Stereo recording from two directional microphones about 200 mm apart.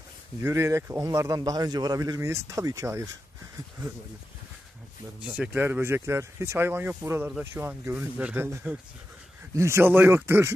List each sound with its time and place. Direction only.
0.4 s speech: 15° right (ahead or behind)
5.2 s speech: 5° right (ahead or behind)